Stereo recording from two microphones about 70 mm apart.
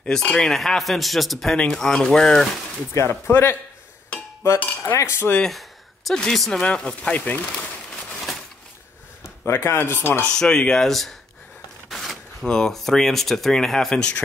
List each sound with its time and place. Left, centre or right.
0.0 s speech: centre
3.1 s speech: left
4.6 s cutlery: left
4.9 s cutlery: left
5.4 s a sound: centre
6.1 s speech: centre
7.9 s a sound: centre
9.4 s speech: left
10.3 s speech: centre